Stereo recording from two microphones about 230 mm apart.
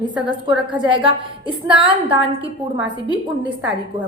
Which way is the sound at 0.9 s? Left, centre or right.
Right.